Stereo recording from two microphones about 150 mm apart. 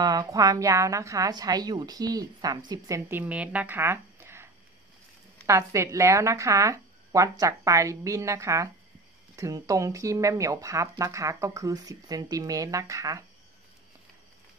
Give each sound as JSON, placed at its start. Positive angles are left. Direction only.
{"t": 0.0, "sound": "speech", "side_deg": -25}
{"t": 3.1, "sound": "speech", "side_deg": -10}
{"t": 5.5, "sound": "speech", "side_deg": -20}